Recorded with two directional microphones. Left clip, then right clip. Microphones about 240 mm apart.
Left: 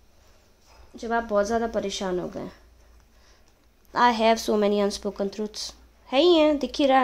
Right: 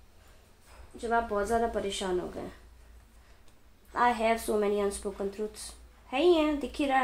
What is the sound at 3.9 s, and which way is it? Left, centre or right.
Speech, left.